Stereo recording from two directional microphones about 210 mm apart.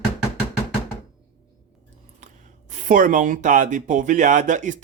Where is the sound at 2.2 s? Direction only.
35° right (ahead or behind).